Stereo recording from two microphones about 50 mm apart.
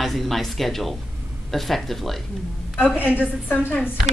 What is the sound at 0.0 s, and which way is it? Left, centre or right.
A woman's voice, centre.